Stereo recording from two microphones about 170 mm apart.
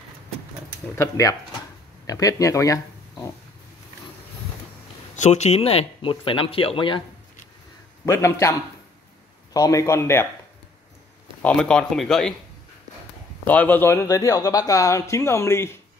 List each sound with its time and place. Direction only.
0.9 s a man's voice: 15° left (ahead or behind)
5.1 s speech: 40° left (ahead or behind)
8.0 s a man's voice: 15° left (ahead or behind)
11.4 s speech: 5° left (ahead or behind)
13.5 s a man's voice: 10° left (ahead or behind)